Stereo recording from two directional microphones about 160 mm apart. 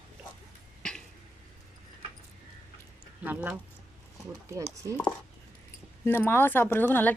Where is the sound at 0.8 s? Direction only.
5° left (ahead or behind).